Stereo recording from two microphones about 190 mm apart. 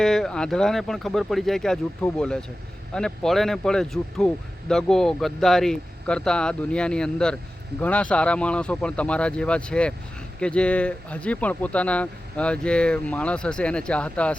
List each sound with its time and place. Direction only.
0.0 s speech: centre (ahead or behind)